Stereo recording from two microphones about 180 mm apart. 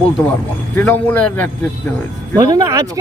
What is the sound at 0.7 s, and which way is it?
Speech, 10° left (ahead or behind).